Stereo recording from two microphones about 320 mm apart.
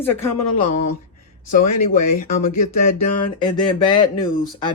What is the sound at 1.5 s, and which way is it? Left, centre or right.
Speech, left.